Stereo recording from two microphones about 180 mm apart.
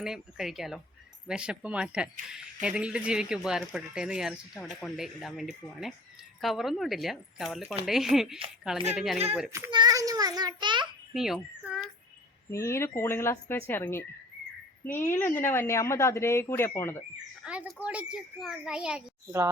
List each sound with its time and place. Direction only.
0.0 s speech: centre (ahead or behind)
9.5 s a child's voice: 20° right (ahead or behind)
11.1 s a child's voice: 5° right (ahead or behind)
12.5 s speech: 15° left (ahead or behind)
17.4 s speech: 5° right (ahead or behind)